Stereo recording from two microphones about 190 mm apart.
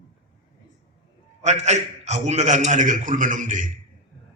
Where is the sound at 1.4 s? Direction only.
35° right (ahead or behind).